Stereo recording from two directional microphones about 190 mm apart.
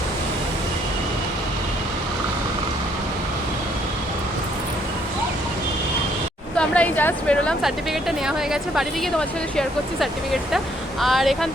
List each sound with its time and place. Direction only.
6.6 s speech: 10° left (ahead or behind)
11.0 s speech: centre (ahead or behind)